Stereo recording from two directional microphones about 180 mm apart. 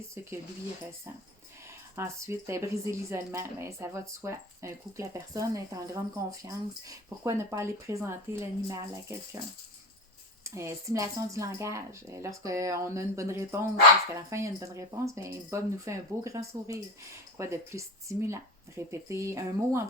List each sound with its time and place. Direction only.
2.0 s speech: 15° right (ahead or behind)
10.4 s speech: 15° right (ahead or behind)